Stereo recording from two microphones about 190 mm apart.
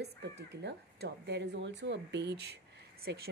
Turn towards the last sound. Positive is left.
turn(degrees=-55)  # may be behind; listen again after turning